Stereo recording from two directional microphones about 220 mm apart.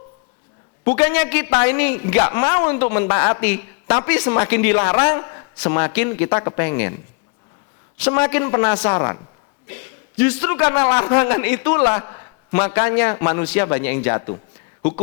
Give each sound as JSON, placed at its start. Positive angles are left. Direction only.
{"t": 0.9, "sound": "a man's voice", "side_deg": 10}
{"t": 8.0, "sound": "a man's voice", "side_deg": 15}